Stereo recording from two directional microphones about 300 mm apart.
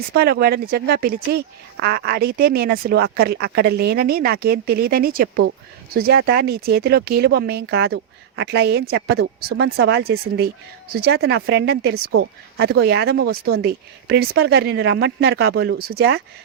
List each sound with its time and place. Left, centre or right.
0.1 s speech: right